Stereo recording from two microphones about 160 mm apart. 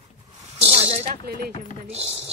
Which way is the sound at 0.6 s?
40° right (ahead or behind).